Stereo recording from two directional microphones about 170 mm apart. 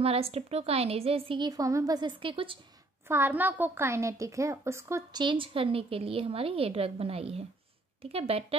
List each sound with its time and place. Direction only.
0.0 s a woman's voice: 35° right (ahead or behind)
3.1 s a woman's voice: 10° right (ahead or behind); by 8.5 s 35° right (ahead or behind)